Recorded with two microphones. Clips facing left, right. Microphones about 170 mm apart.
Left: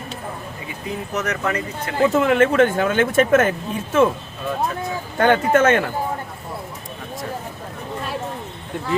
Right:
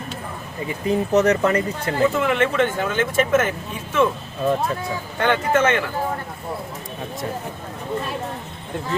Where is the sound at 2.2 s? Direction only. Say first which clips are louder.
Left 4 dB; 45° left (ahead or behind).